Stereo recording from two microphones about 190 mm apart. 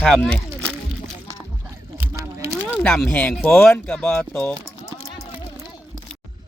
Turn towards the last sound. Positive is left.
turn(degrees=5)  # may be behind; listen again after turning